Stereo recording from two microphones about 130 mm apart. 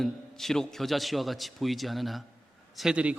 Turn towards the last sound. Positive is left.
turn(degrees=-5)  # may be behind; listen again after turning